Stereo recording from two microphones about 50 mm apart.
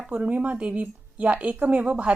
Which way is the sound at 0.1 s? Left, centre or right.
Right.